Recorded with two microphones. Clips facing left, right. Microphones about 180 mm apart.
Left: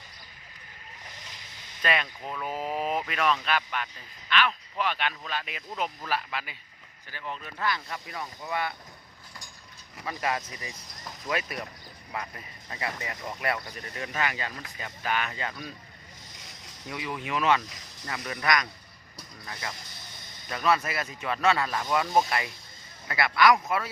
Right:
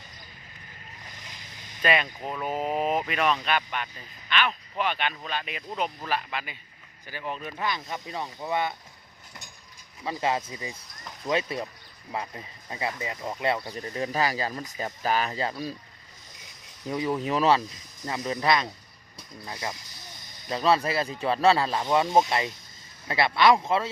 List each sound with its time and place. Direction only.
1.8 s speech: 5° right (ahead or behind)
2.7 s vehicle: centre (ahead or behind)
3.1 s speech: 10° right (ahead or behind)
7.1 s speech: 15° right (ahead or behind)
10.1 s speech: 25° right (ahead or behind)
16.9 s speech: 40° right (ahead or behind)
20.5 s speech: 30° right (ahead or behind)